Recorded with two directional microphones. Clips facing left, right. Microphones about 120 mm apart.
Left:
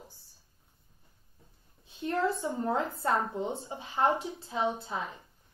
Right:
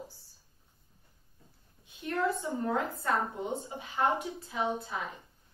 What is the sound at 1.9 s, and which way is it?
A woman's voice, 30° left (ahead or behind).